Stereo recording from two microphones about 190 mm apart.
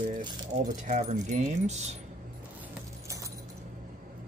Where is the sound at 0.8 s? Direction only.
40° right (ahead or behind).